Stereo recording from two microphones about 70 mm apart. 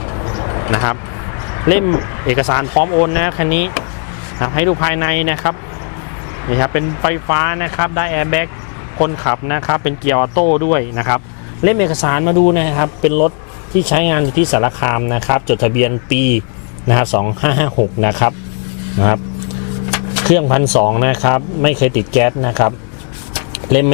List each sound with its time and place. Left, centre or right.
0.0 s vehicle: left
1.5 s speech: left
23.3 s a sound: left